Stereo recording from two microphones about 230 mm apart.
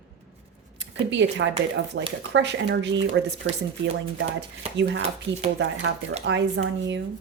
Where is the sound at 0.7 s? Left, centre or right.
Right.